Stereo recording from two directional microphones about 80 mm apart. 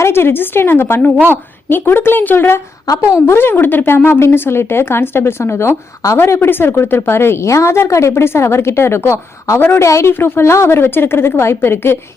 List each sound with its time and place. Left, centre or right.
0.0 s a woman's voice: left